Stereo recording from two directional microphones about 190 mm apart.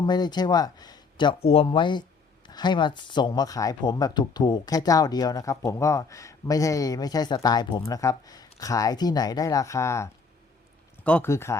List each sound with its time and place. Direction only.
0.0 s speech: 20° left (ahead or behind)